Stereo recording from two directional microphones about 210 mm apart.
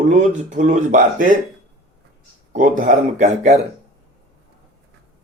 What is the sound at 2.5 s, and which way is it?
Speech, 40° right (ahead or behind).